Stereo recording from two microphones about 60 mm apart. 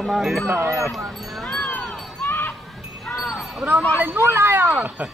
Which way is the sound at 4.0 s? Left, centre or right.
Right.